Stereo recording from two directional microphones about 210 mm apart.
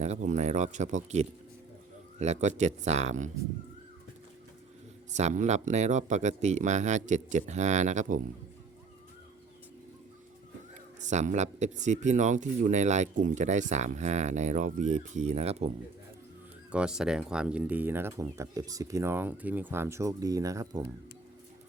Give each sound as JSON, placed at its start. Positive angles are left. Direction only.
{"t": 0.0, "sound": "speech", "side_deg": -35}
{"t": 5.1, "sound": "speech", "side_deg": -35}
{"t": 11.0, "sound": "speech", "side_deg": -35}
{"t": 16.7, "sound": "speech", "side_deg": -5}